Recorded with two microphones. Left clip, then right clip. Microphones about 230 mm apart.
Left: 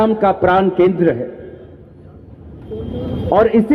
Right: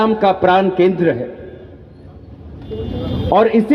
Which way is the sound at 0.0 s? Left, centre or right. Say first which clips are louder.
Even; left.